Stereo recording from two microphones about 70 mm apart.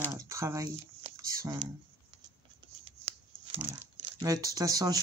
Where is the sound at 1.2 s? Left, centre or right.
Right.